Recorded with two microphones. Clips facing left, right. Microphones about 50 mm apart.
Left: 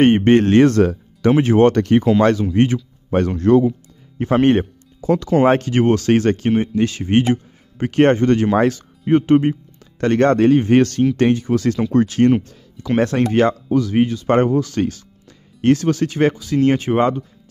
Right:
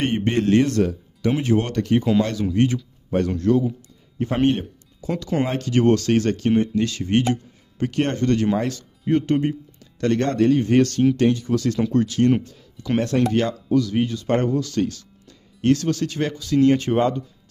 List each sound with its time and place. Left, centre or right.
0.0 s speech: left
5.0 s speech: left
5.7 s speech: left
16.7 s speech: centre